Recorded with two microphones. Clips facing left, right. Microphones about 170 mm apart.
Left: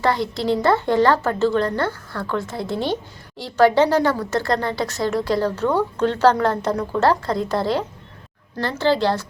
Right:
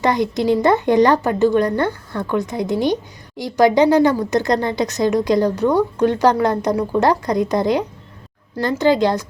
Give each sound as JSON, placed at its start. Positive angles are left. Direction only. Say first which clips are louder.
{"t": 0.0, "sound": "a woman's voice", "louder": "right 3 dB", "side_deg": -15}